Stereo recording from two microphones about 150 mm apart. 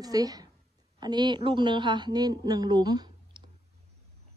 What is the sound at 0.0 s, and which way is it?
A woman's voice, 25° right (ahead or behind).